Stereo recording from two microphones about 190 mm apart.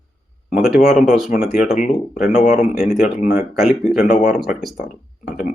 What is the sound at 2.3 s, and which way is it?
Speech, 35° left (ahead or behind).